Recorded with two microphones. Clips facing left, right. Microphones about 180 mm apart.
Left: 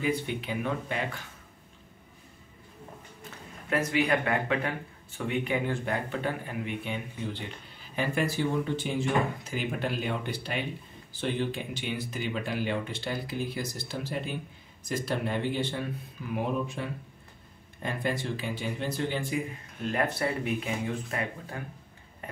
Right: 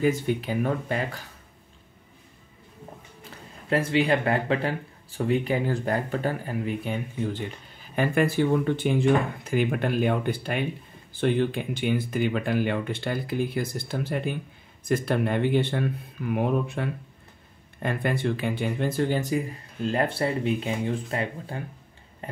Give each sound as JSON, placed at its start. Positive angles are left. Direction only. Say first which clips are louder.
{"t": 0.0, "sound": "speech", "louder": "right 6 dB", "side_deg": -45}
{"t": 3.7, "sound": "speech", "louder": "right 4 dB", "side_deg": -30}
{"t": 7.9, "sound": "speech", "louder": "right 6 dB", "side_deg": -55}
{"t": 22.2, "sound": "a sound", "louder": "right 5 dB", "side_deg": -30}